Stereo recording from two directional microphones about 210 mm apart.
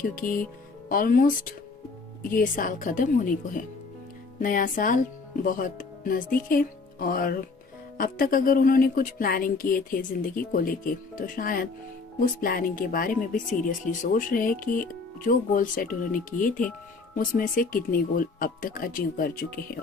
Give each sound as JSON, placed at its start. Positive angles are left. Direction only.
{"t": 0.0, "sound": "speech", "side_deg": 40}
{"t": 2.3, "sound": "speech", "side_deg": 40}